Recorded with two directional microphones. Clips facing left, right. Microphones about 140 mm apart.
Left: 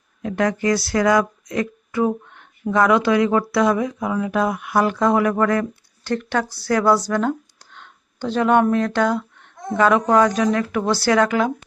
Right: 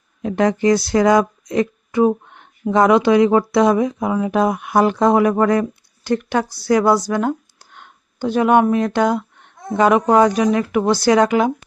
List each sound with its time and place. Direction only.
0.2 s speech: 25° right (ahead or behind)